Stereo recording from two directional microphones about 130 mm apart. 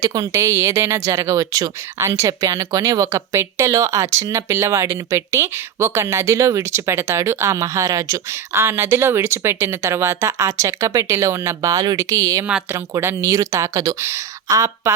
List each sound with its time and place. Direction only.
0.0 s speech: 25° right (ahead or behind)